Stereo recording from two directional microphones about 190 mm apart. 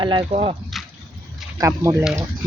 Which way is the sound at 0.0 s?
25° right (ahead or behind).